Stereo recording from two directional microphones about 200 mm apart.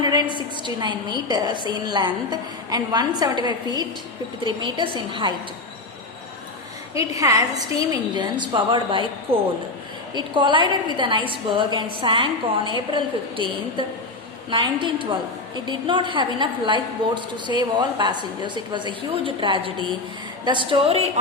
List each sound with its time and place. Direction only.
0.0 s a woman's voice: 20° right (ahead or behind)
7.1 s a woman's voice: 15° right (ahead or behind)